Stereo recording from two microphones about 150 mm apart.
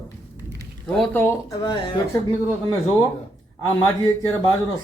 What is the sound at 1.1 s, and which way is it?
Speech, 15° left (ahead or behind).